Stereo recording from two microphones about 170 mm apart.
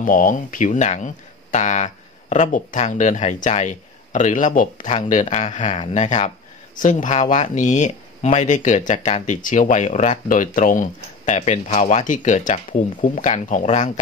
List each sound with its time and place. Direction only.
0.0 s speech: 50° left (ahead or behind)